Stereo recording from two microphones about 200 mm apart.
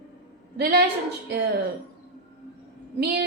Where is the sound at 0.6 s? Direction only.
50° right (ahead or behind).